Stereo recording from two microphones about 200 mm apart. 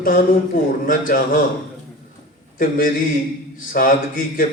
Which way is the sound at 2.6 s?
45° left (ahead or behind).